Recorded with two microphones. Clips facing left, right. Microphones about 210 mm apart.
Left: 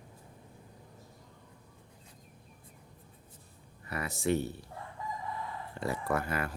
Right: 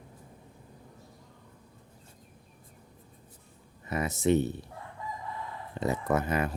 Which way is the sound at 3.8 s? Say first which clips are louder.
Right 5 dB; 20° right (ahead or behind).